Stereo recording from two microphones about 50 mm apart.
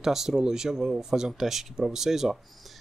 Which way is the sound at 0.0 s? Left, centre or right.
Centre.